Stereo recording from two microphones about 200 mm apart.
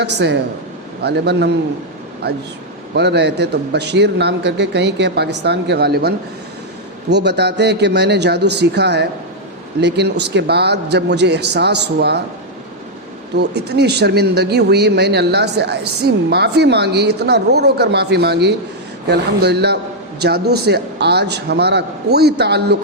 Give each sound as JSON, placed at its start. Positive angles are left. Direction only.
{"t": 0.0, "sound": "speech", "side_deg": -55}
{"t": 13.3, "sound": "speech", "side_deg": -55}